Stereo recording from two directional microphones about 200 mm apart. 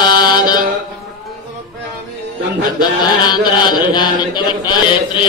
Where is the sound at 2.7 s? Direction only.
20° left (ahead or behind).